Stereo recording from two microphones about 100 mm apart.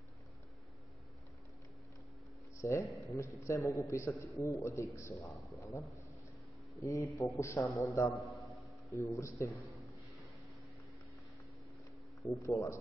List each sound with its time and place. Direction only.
2.6 s a man's voice: 30° left (ahead or behind)
5.3 s a man's voice: centre (ahead or behind)
5.6 s a man's voice: 35° left (ahead or behind)
8.2 s a sound: centre (ahead or behind)
8.9 s speech: 30° left (ahead or behind)
12.2 s a man's voice: 30° left (ahead or behind)